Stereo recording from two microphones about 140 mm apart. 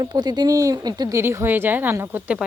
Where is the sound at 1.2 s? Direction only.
15° right (ahead or behind).